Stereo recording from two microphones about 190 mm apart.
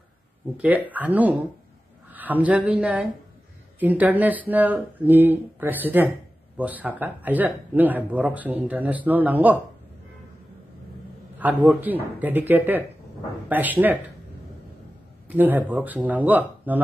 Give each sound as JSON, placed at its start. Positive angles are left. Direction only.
{"t": 0.6, "sound": "speech", "side_deg": -10}
{"t": 11.6, "sound": "speech", "side_deg": -5}
{"t": 15.2, "sound": "a man's voice", "side_deg": -10}